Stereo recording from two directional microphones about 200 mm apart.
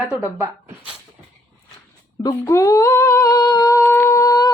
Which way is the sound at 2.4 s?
15° left (ahead or behind).